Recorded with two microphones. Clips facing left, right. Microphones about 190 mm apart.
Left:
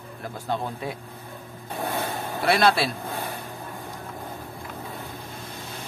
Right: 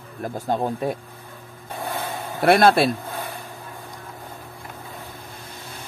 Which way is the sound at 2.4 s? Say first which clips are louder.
Right 6 dB; 50° right (ahead or behind).